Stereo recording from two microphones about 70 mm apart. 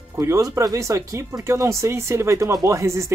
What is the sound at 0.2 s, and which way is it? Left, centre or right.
Speech, right.